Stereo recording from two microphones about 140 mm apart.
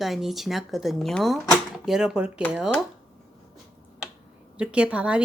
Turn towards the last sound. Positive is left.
turn(degrees=-10)  # may be behind; listen again after turning